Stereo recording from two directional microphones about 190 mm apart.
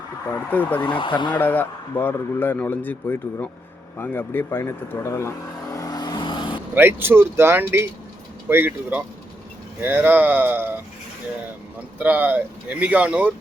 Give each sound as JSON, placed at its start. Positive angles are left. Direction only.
{"t": 0.3, "sound": "a man's voice", "side_deg": 10}
{"t": 0.8, "sound": "speech", "side_deg": 25}
{"t": 1.4, "sound": "a man's voice", "side_deg": 10}
{"t": 5.7, "sound": "vehicle", "side_deg": 20}
{"t": 6.7, "sound": "speech", "side_deg": -10}
{"t": 11.9, "sound": "speech", "side_deg": -10}